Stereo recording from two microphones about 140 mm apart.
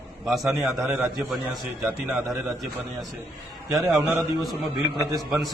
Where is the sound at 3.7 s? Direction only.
Centre (ahead or behind).